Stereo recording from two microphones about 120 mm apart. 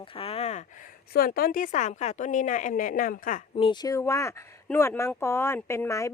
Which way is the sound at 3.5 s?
45° left (ahead or behind).